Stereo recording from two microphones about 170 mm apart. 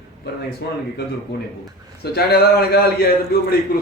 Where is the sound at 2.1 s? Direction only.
65° left (ahead or behind).